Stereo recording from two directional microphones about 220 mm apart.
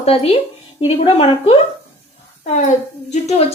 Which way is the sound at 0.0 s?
25° left (ahead or behind).